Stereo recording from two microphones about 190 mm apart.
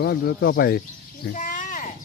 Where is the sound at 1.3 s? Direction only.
40° left (ahead or behind).